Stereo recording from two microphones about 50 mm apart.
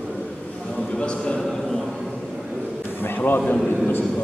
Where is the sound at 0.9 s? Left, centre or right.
Centre.